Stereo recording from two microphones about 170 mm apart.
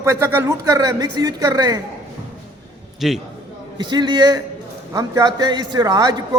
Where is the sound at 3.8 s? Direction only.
25° right (ahead or behind).